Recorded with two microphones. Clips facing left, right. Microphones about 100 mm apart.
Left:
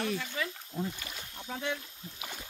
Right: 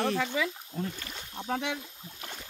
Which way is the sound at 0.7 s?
10° left (ahead or behind).